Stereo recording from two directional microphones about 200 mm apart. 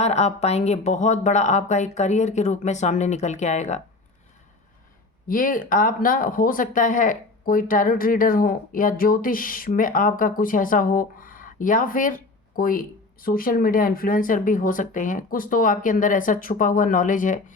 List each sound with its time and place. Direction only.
0.0 s speech: 35° left (ahead or behind)
5.3 s speech: 45° left (ahead or behind)